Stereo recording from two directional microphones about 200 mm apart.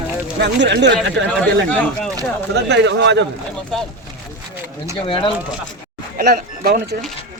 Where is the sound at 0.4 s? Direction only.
60° right (ahead or behind).